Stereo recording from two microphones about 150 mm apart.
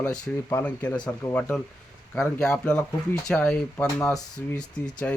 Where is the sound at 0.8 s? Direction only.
30° left (ahead or behind).